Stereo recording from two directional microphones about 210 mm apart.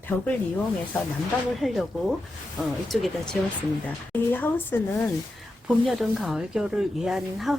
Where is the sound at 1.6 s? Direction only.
5° right (ahead or behind).